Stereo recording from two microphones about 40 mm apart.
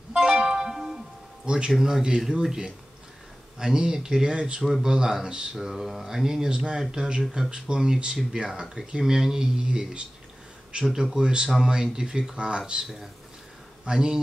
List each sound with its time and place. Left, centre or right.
0.1 s music: centre
1.8 s speech: centre
3.5 s speech: centre
6.5 s speech: right
12.8 s speech: centre
13.8 s speech: centre